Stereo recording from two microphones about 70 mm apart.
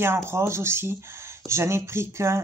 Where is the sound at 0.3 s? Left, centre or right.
Right.